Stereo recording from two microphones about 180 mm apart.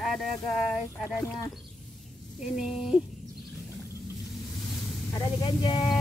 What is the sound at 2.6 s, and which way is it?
Speech, 5° right (ahead or behind).